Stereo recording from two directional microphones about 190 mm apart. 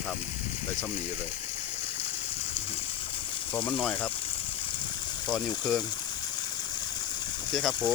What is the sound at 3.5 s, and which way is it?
Speech, 10° left (ahead or behind).